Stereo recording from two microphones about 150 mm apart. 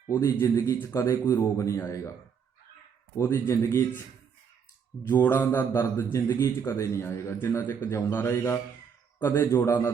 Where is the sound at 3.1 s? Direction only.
20° left (ahead or behind).